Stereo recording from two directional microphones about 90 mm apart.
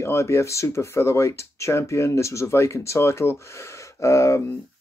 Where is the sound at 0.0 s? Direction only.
30° left (ahead or behind).